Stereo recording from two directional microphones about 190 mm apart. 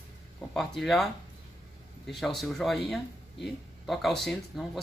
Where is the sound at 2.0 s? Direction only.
Centre (ahead or behind).